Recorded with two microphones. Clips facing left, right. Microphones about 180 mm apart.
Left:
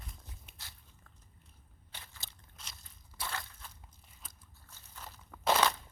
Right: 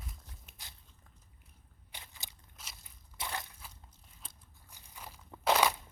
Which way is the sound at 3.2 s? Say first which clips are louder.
Right 1 dB; 20° right (ahead or behind).